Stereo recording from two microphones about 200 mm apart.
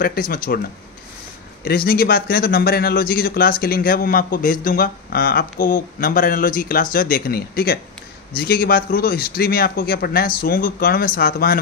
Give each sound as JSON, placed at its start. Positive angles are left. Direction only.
{"t": 0.0, "sound": "a man's voice", "side_deg": 45}
{"t": 1.6, "sound": "a man's voice", "side_deg": 50}